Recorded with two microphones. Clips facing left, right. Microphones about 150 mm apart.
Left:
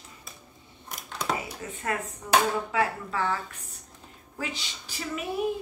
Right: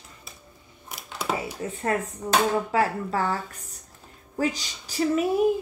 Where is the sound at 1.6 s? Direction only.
35° right (ahead or behind).